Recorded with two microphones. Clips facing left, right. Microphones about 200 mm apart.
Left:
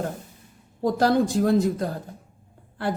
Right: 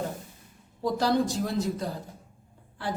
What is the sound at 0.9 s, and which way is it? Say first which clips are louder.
Speech: left 5 dB; 50° left (ahead or behind).